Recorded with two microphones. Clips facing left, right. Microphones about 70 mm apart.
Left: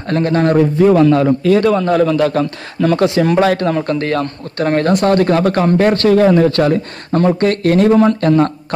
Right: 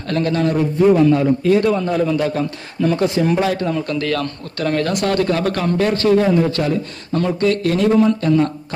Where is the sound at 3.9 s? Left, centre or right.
Left.